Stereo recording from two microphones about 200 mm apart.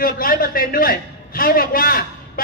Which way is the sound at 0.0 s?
45° left (ahead or behind).